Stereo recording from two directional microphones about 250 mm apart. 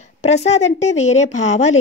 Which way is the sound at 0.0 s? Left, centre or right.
Left.